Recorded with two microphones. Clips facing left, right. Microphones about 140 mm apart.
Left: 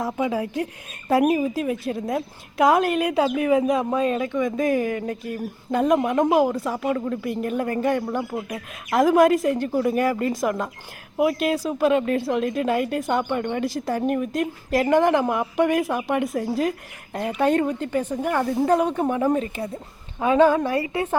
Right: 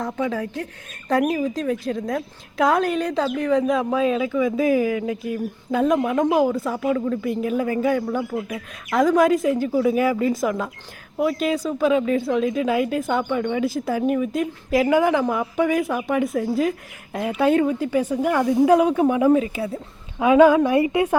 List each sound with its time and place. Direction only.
0.0 s a woman's voice: 10° left (ahead or behind); by 21.2 s 15° right (ahead or behind)